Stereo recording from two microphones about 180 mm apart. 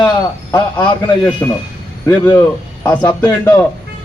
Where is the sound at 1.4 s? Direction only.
20° left (ahead or behind).